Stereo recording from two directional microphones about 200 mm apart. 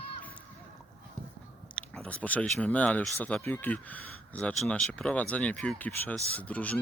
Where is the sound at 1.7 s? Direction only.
5° left (ahead or behind).